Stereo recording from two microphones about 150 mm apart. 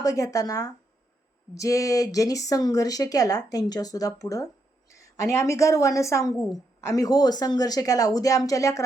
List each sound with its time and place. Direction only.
0.0 s speech: 25° left (ahead or behind)